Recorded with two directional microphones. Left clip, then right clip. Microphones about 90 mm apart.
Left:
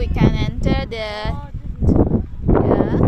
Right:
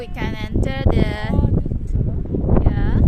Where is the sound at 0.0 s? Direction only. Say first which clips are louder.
Left 7 dB; centre (ahead or behind).